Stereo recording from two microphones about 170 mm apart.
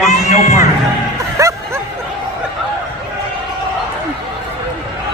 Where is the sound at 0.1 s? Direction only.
40° left (ahead or behind).